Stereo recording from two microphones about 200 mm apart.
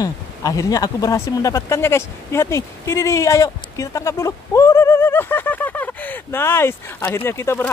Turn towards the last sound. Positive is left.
turn(degrees=10)  # may be behind; listen again after turning